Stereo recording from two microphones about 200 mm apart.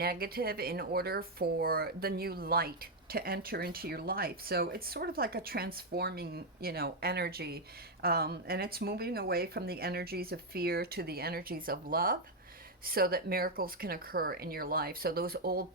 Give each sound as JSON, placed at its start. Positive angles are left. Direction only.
{"t": 0.0, "sound": "speech", "side_deg": -50}